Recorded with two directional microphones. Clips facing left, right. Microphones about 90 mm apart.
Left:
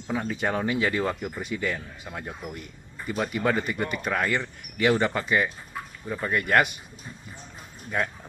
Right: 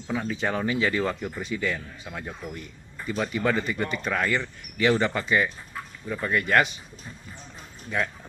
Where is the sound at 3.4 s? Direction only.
10° left (ahead or behind).